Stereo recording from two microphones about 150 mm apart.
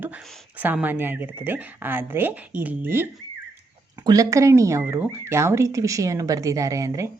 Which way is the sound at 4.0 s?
25° right (ahead or behind).